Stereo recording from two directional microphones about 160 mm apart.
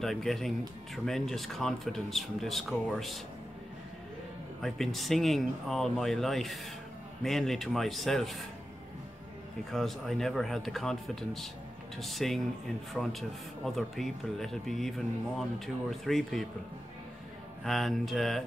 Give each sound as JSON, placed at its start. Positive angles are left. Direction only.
{"t": 0.0, "sound": "speech", "side_deg": 0}
{"t": 4.6, "sound": "speech", "side_deg": 0}
{"t": 9.7, "sound": "speech", "side_deg": 0}
{"t": 17.6, "sound": "speech", "side_deg": 0}